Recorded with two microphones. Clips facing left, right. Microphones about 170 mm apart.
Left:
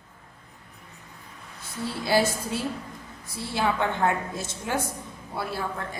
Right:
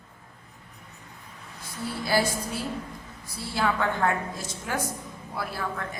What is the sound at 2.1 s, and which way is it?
A woman's voice, 25° left (ahead or behind).